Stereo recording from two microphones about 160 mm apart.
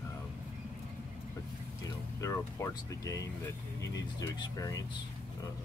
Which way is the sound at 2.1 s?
20° left (ahead or behind).